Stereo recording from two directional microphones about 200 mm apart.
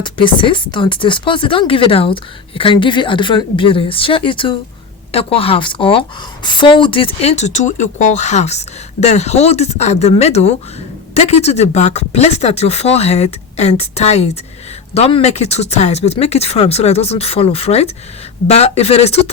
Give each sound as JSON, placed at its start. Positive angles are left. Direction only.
{"t": 0.0, "sound": "speech", "side_deg": 25}